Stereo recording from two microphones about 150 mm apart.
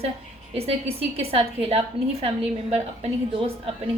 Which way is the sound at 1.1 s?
45° right (ahead or behind).